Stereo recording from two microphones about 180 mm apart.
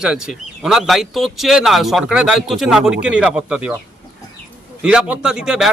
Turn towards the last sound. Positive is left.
turn(degrees=-5)  # may be behind; listen again after turning